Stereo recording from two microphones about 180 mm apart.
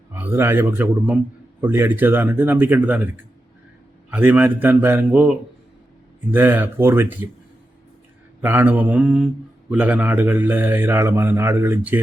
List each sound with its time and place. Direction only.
0.1 s speech: 10° right (ahead or behind)
4.1 s speech: 10° right (ahead or behind)
8.4 s speech: 10° right (ahead or behind)